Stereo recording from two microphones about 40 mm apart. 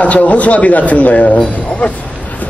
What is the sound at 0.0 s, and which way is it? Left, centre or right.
A man's voice, left.